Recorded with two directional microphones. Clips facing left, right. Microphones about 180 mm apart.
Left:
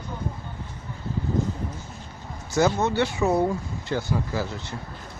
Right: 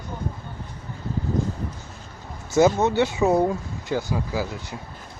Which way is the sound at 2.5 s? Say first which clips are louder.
Right 4 dB; 20° right (ahead or behind).